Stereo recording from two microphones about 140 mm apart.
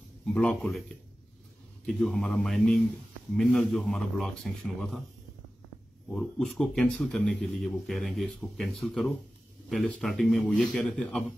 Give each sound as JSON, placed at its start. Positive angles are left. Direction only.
{"t": 0.3, "sound": "speech", "side_deg": 5}
{"t": 1.9, "sound": "speech", "side_deg": 5}
{"t": 6.1, "sound": "speech", "side_deg": 0}